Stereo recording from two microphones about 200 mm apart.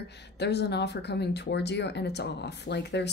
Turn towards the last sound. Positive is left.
turn(degrees=60)  # may be behind; listen again after turning